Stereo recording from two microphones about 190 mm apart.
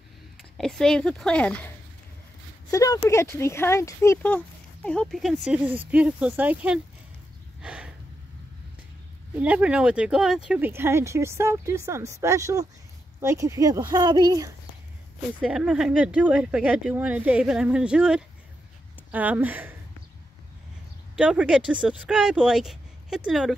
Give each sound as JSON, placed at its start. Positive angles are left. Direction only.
{"t": 0.6, "sound": "speech", "side_deg": 5}
{"t": 2.7, "sound": "speech", "side_deg": 15}
{"t": 7.6, "sound": "snort", "side_deg": -5}
{"t": 9.4, "sound": "speech", "side_deg": -5}
{"t": 15.4, "sound": "speech", "side_deg": -5}
{"t": 21.2, "sound": "speech", "side_deg": -5}